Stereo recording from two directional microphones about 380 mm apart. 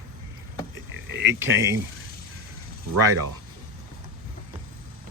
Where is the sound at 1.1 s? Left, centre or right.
Right.